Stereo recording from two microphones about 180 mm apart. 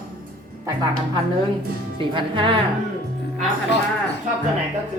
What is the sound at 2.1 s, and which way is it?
Speech, 30° right (ahead or behind).